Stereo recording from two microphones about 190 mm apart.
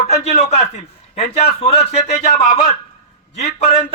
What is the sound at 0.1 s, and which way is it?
A man's voice, 35° left (ahead or behind).